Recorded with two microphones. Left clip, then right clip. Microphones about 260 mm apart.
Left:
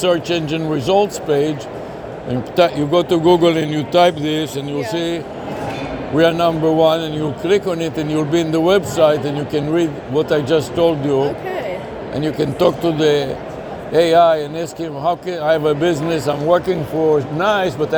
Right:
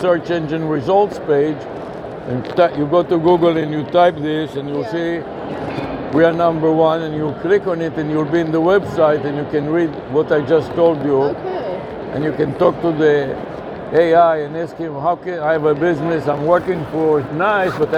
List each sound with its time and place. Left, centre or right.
0.0 s a man's voice: left
2.6 s a man's voice: left